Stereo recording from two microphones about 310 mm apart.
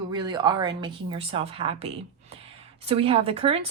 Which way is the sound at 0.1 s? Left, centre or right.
Centre.